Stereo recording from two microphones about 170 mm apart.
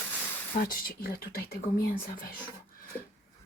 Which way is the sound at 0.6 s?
60° left (ahead or behind).